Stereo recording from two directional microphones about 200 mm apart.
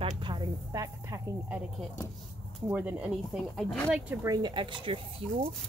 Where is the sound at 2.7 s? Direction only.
10° right (ahead or behind).